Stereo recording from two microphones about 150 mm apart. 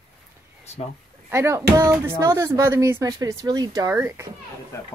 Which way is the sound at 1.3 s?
20° right (ahead or behind).